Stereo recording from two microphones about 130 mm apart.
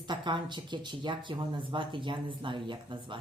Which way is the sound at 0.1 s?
35° right (ahead or behind).